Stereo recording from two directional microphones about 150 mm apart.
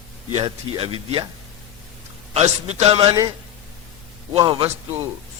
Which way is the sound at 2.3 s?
45° right (ahead or behind).